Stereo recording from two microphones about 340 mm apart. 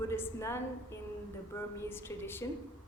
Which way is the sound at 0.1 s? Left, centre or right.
Centre.